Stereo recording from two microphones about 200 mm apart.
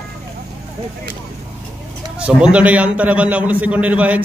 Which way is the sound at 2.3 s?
5° right (ahead or behind).